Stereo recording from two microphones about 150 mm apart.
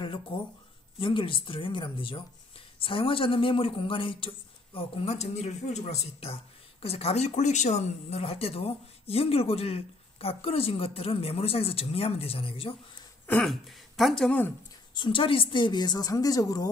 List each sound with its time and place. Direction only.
0.0 s speech: 35° left (ahead or behind)
13.3 s speech: centre (ahead or behind)
15.0 s a woman's voice: 35° left (ahead or behind)